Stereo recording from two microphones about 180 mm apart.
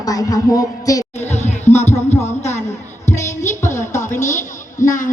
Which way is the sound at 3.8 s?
40° left (ahead or behind).